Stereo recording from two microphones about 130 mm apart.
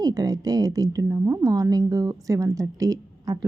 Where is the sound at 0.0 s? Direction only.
30° right (ahead or behind).